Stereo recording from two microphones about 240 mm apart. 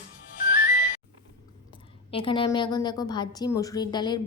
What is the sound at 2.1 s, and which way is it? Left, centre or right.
A woman's voice, left.